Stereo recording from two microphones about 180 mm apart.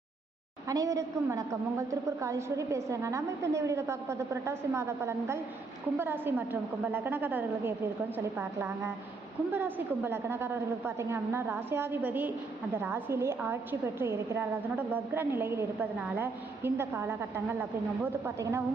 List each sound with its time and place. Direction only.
0.7 s a woman's voice: 20° right (ahead or behind)